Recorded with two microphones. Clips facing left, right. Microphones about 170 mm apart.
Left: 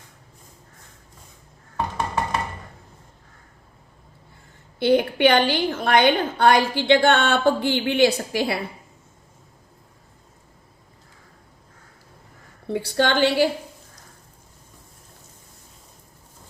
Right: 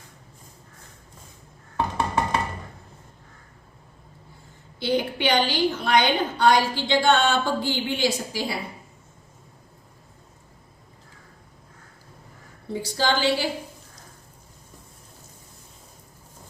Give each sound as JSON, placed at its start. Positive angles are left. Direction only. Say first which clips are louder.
{"t": 4.8, "sound": "a woman's voice", "louder": "left 7 dB", "side_deg": 55}
{"t": 12.7, "sound": "a woman's voice", "louder": "left 3 dB", "side_deg": 60}